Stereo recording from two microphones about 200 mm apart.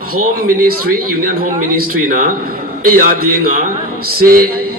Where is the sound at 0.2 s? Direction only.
45° right (ahead or behind).